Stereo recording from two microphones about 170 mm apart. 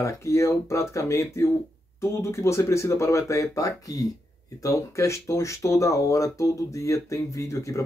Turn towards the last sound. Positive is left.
turn(degrees=20)  # may be behind; listen again after turning